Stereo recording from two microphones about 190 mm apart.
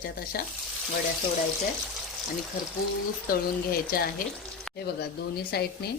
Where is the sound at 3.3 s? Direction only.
50° left (ahead or behind).